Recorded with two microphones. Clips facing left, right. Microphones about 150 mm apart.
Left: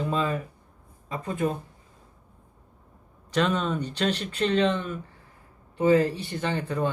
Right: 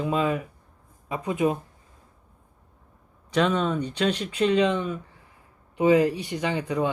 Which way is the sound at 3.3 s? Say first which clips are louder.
Right 2 dB; 5° right (ahead or behind).